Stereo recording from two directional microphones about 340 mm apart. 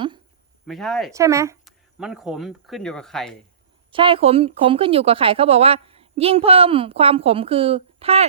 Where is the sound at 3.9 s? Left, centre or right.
Centre.